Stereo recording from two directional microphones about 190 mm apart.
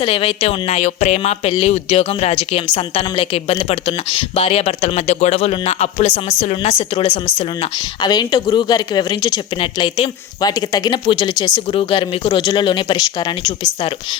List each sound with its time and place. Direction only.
0.0 s a woman's voice: 30° left (ahead or behind)